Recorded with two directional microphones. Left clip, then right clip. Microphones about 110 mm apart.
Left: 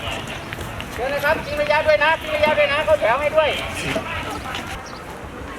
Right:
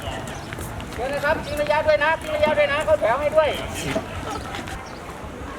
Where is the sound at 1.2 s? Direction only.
Centre (ahead or behind).